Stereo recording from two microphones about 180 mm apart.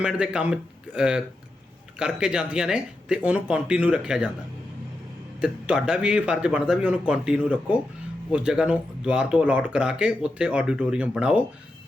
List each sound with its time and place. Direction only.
0.0 s speech: 5° right (ahead or behind)
5.4 s speech: 5° right (ahead or behind)